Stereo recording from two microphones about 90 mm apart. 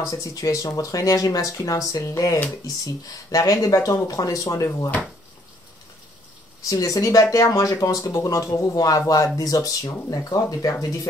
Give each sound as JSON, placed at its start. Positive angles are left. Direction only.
{"t": 0.1, "sound": "speech", "side_deg": 40}
{"t": 6.7, "sound": "speech", "side_deg": 40}